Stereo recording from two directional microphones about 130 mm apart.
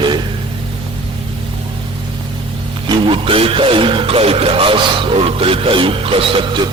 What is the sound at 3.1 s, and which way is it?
Speech, 45° right (ahead or behind).